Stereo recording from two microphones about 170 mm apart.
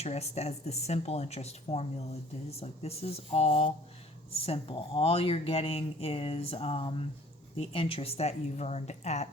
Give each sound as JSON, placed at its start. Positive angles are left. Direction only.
{"t": 0.0, "sound": "speech", "side_deg": 40}